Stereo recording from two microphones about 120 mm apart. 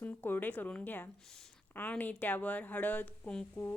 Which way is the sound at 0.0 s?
15° left (ahead or behind).